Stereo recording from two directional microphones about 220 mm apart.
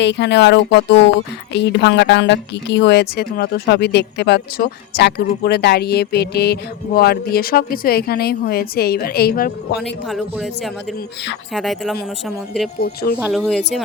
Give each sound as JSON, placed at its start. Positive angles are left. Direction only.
{"t": 0.0, "sound": "a woman's voice", "side_deg": 55}
{"t": 10.1, "sound": "speech", "side_deg": 0}
{"t": 12.8, "sound": "a woman's voice", "side_deg": 45}
{"t": 13.1, "sound": "speech", "side_deg": -5}